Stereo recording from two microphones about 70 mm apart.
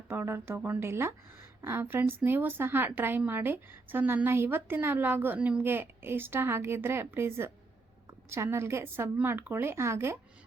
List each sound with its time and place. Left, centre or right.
0.1 s a woman's voice: right; by 5.6 s centre
5.6 s a woman's voice: right